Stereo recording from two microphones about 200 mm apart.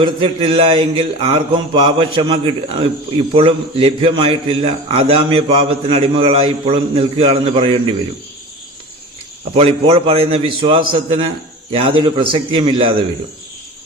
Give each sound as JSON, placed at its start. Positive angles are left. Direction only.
{"t": 0.0, "sound": "speech", "side_deg": -25}
{"t": 9.6, "sound": "speech", "side_deg": -30}